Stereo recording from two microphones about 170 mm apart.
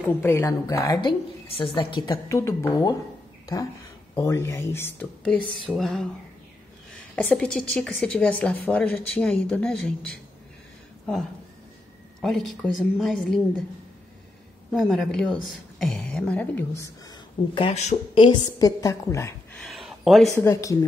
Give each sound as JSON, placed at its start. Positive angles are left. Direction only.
{"t": 0.2, "sound": "a woman's voice", "side_deg": 15}
{"t": 4.2, "sound": "a woman's voice", "side_deg": 15}
{"t": 12.2, "sound": "a woman's voice", "side_deg": 0}
{"t": 14.7, "sound": "a woman's voice", "side_deg": 0}
{"t": 17.1, "sound": "speech", "side_deg": 30}
{"t": 18.1, "sound": "a woman's voice", "side_deg": 25}
{"t": 19.6, "sound": "a sound", "side_deg": 0}
{"t": 20.2, "sound": "speech", "side_deg": 15}